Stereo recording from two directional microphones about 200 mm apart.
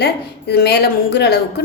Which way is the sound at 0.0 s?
55° left (ahead or behind).